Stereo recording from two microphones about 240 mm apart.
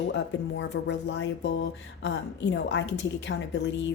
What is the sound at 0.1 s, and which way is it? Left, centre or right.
A woman's voice, left.